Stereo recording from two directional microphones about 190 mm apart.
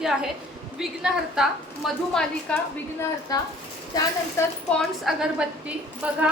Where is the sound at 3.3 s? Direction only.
20° left (ahead or behind).